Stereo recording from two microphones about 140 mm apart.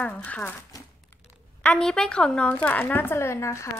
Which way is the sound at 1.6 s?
5° left (ahead or behind).